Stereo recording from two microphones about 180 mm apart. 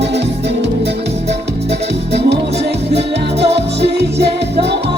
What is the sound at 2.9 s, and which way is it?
Music, 70° right (ahead or behind).